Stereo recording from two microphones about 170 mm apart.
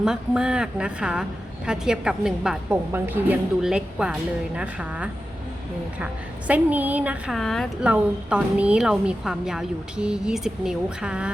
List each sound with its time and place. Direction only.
0.0 s a woman's voice: 5° right (ahead or behind)
6.5 s a woman's voice: 10° right (ahead or behind)